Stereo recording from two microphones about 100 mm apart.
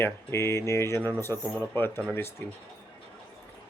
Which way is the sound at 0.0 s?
25° left (ahead or behind).